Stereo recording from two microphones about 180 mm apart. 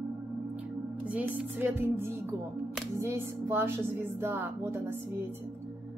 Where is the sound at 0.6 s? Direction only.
10° right (ahead or behind).